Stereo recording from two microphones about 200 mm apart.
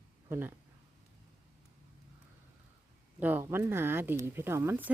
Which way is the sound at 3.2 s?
10° right (ahead or behind).